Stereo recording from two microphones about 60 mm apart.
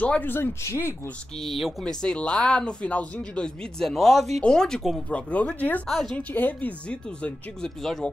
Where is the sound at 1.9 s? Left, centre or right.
Centre.